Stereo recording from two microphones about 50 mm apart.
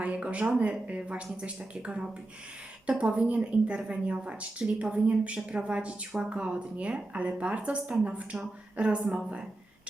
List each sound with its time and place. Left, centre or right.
0.0 s a woman's voice: right